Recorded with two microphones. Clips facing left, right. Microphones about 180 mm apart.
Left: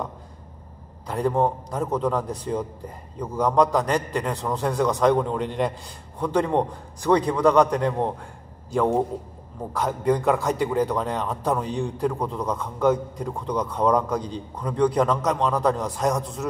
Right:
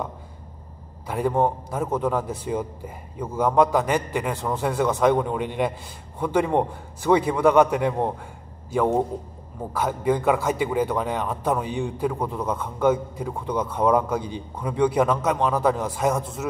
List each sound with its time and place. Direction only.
1.0 s a man's voice: 5° right (ahead or behind)